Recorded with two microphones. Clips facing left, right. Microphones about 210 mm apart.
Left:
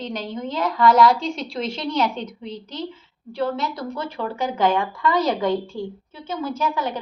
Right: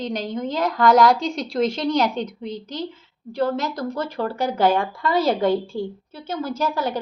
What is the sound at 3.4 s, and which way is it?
A woman's voice, 40° right (ahead or behind).